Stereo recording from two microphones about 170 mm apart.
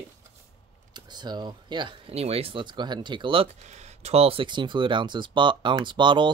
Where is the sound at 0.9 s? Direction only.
25° right (ahead or behind).